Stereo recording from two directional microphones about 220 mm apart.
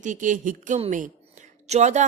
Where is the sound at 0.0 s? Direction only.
35° right (ahead or behind).